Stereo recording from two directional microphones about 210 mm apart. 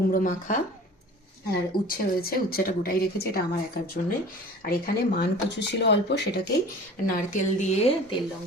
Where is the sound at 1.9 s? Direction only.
45° left (ahead or behind).